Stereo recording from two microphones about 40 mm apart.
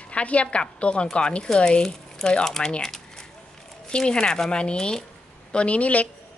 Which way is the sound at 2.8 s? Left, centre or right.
Centre.